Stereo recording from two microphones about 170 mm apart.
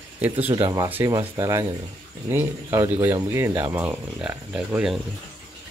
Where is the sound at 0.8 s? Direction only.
15° right (ahead or behind).